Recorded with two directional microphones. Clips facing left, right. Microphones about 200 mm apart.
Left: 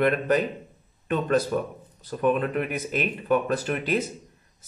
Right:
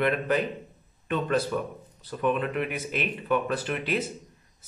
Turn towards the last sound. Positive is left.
turn(degrees=45)  # may be behind; listen again after turning